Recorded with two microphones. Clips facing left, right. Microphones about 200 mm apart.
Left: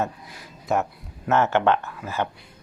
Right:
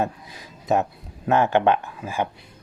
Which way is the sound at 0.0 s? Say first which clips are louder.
Right 2 dB; 20° right (ahead or behind).